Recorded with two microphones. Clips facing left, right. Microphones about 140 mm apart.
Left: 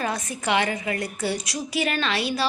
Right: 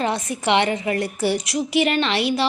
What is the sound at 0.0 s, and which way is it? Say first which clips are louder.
Speech: right 5 dB; 25° right (ahead or behind).